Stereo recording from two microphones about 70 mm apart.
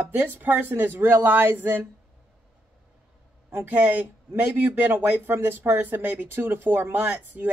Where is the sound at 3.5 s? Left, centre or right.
Right.